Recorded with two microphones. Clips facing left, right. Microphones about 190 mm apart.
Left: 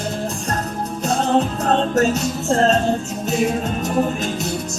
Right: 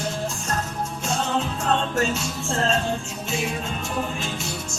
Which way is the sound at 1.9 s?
40° left (ahead or behind).